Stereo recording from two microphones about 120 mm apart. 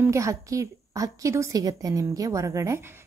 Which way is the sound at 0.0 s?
25° right (ahead or behind).